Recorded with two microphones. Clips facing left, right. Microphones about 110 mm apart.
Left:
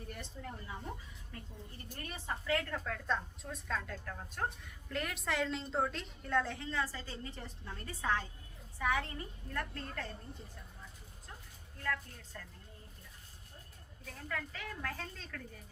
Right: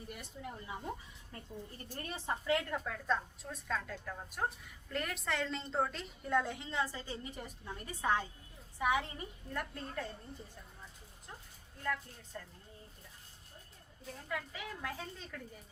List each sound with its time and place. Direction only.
0.1 s a woman's voice: 15° right (ahead or behind)
1.9 s a woman's voice: 30° right (ahead or behind); by 6.1 s centre (ahead or behind)
6.2 s a woman's voice: 15° right (ahead or behind)
11.8 s a woman's voice: 15° right (ahead or behind)
14.3 s a woman's voice: 15° right (ahead or behind)